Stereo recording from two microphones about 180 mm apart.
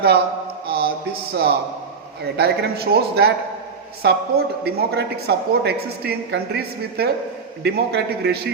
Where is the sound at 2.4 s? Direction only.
60° right (ahead or behind).